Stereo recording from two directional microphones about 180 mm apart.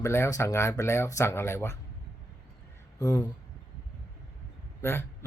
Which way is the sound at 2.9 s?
15° left (ahead or behind).